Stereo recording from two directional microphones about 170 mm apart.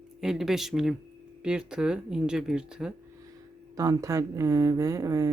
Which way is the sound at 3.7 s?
20° right (ahead or behind).